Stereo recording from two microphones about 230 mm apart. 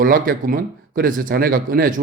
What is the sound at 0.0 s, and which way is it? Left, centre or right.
A man's voice, right.